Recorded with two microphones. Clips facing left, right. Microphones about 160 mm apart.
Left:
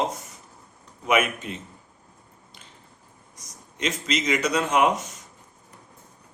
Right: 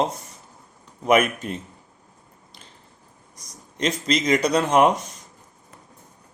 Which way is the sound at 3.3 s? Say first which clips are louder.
Right 3 dB; 35° right (ahead or behind).